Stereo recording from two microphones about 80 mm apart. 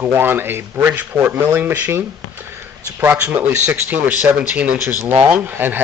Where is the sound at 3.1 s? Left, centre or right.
Centre.